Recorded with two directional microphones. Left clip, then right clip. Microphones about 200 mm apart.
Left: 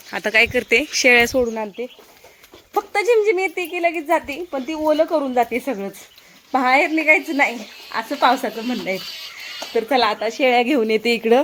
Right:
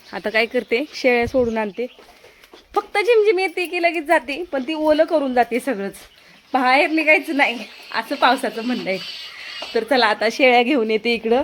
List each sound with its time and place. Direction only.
0.1 s a woman's voice: 10° right (ahead or behind)
2.7 s a woman's voice: centre (ahead or behind)
6.5 s a woman's voice: centre (ahead or behind)
10.2 s a woman's voice: 45° right (ahead or behind)
10.5 s a woman's voice: 10° right (ahead or behind)
10.8 s a woman's voice: centre (ahead or behind)